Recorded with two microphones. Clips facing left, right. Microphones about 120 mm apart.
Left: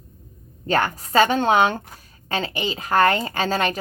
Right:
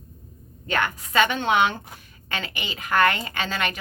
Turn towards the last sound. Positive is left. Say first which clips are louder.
# left 6 dB
turn(degrees=40)  # may be behind; listen again after turning